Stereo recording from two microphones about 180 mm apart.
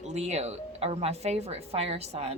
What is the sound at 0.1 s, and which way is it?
Speech, 40° right (ahead or behind).